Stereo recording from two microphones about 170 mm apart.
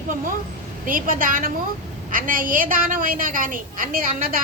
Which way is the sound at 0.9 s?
55° right (ahead or behind).